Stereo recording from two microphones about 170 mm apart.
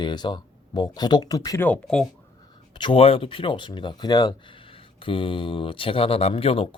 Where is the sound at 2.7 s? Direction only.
30° left (ahead or behind).